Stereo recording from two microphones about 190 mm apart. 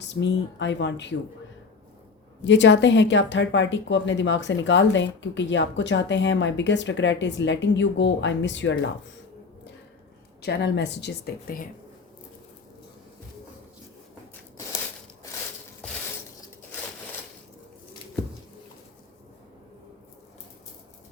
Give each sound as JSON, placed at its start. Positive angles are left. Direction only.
{"t": 0.1, "sound": "speech", "side_deg": 70}
{"t": 2.4, "sound": "speech", "side_deg": 70}
{"t": 10.4, "sound": "speech", "side_deg": 60}